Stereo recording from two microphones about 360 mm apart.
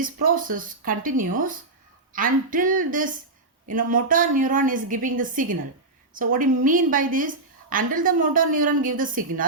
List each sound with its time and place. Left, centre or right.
0.0 s a woman's voice: right